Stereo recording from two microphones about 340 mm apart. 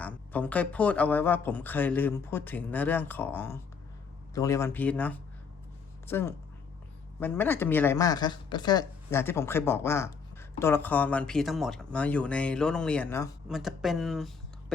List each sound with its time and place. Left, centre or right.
0.0 s speech: centre